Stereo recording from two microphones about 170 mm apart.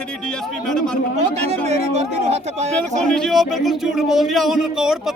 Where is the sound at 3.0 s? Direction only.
5° left (ahead or behind).